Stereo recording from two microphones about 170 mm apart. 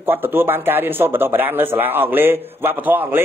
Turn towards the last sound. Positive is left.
turn(degrees=-10)  # may be behind; listen again after turning